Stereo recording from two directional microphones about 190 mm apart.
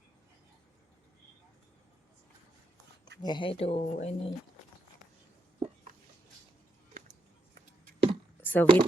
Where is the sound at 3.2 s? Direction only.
25° left (ahead or behind).